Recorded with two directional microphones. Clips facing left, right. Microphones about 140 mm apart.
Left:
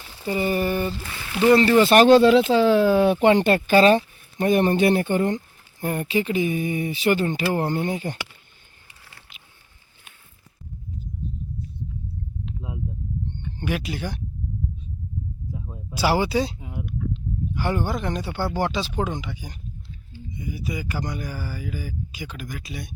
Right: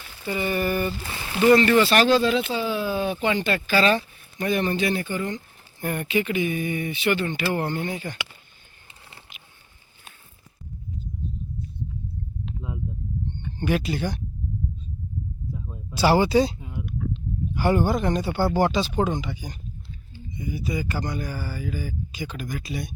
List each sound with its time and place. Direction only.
0.1 s a sound: 30° left (ahead or behind)
1.0 s speech: 30° right (ahead or behind)
1.4 s speech: 30° left (ahead or behind)
1.9 s speech: 55° left (ahead or behind)
5.8 s speech: 30° left (ahead or behind)
13.6 s speech: 5° left (ahead or behind)
15.5 s speech: 15° left (ahead or behind)